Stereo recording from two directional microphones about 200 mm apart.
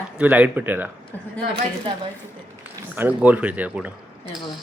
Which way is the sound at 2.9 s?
10° right (ahead or behind).